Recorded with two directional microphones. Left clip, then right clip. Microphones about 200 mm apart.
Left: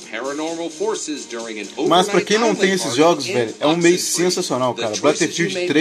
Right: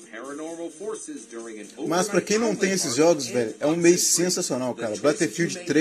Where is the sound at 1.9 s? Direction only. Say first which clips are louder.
Left 8 dB; 15° right (ahead or behind).